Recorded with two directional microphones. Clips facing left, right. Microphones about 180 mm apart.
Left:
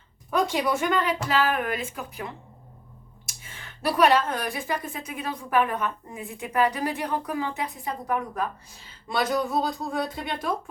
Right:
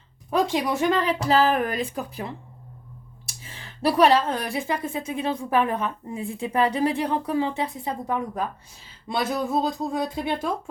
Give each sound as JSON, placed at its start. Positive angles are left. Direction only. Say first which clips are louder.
{"t": 0.3, "sound": "a woman's voice", "louder": "right 1 dB", "side_deg": -30}